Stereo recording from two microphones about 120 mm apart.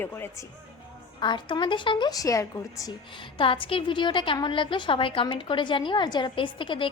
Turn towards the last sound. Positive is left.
turn(degrees=45)  # may be behind; listen again after turning